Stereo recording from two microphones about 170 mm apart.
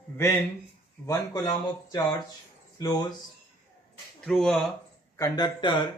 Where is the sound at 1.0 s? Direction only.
20° left (ahead or behind).